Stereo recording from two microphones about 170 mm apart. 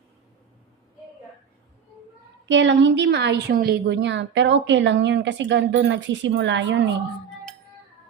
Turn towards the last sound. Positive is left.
turn(degrees=-90)